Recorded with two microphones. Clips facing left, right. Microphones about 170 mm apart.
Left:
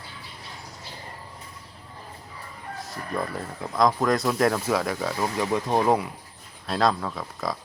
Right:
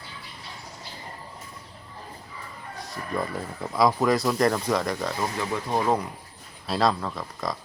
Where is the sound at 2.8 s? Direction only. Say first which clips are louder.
Even; centre (ahead or behind).